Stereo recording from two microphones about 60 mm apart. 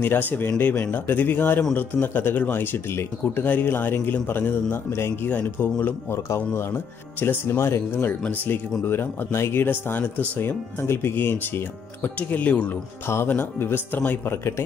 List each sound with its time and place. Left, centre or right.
0.0 s speech: left
4.9 s speech: left
5.3 s speech: left
13.3 s speech: left